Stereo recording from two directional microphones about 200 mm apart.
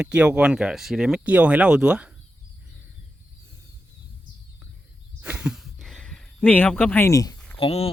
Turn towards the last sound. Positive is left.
turn(degrees=30)  # may be behind; listen again after turning